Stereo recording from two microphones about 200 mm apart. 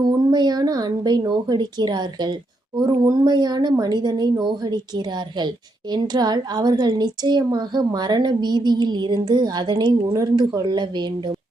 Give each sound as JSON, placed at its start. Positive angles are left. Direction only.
{"t": 0.0, "sound": "a woman's voice", "side_deg": -20}